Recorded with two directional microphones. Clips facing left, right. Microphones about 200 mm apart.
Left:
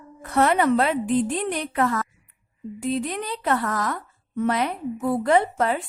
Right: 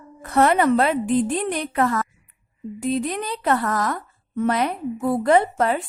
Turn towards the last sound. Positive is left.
turn(degrees=-45)  # may be behind; listen again after turning